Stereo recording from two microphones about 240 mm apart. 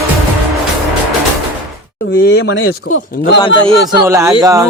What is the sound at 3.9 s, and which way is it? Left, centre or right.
Speech, centre.